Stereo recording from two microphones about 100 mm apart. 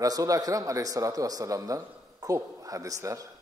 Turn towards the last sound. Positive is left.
turn(degrees=-35)  # may be behind; listen again after turning